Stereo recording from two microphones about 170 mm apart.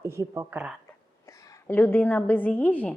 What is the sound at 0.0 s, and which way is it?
Speech, 15° right (ahead or behind).